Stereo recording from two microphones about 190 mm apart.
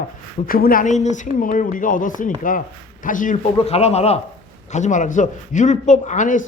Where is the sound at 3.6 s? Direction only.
35° left (ahead or behind).